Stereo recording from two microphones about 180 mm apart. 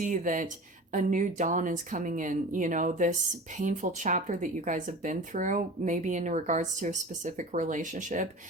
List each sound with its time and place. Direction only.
0.0 s speech: 45° right (ahead or behind)